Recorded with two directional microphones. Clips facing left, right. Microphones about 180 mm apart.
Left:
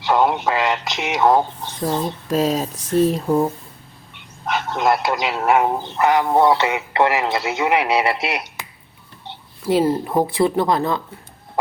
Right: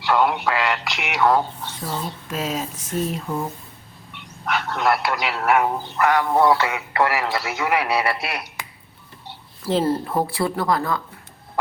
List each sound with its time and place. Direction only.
0.0 s a man's voice: 20° left (ahead or behind)
2.2 s speech: 35° left (ahead or behind)
4.4 s a man's voice: 20° left (ahead or behind)
9.6 s a man's voice: 10° left (ahead or behind)